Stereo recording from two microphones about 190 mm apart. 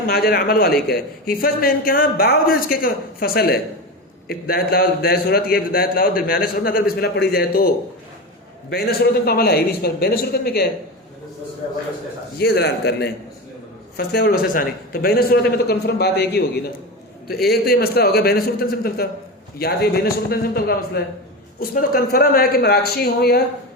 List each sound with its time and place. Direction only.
0.1 s a man's voice: 55° left (ahead or behind)
8.7 s speech: 55° left (ahead or behind)
12.4 s a man's voice: 60° left (ahead or behind)